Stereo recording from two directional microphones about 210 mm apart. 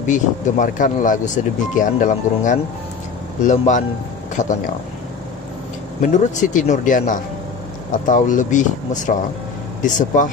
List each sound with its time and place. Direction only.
0.0 s speech: 40° left (ahead or behind)
6.1 s speech: 35° left (ahead or behind)